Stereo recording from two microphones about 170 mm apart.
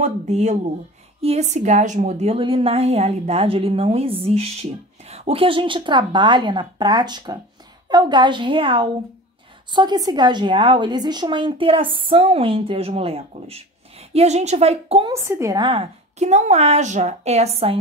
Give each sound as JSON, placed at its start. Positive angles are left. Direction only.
{"t": 0.0, "sound": "a woman's voice", "side_deg": -45}
{"t": 15.0, "sound": "a woman's voice", "side_deg": -15}
{"t": 15.6, "sound": "a woman's voice", "side_deg": -30}